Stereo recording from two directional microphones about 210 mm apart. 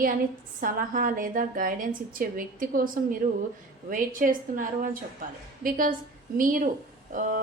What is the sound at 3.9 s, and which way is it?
A woman's voice, 40° right (ahead or behind).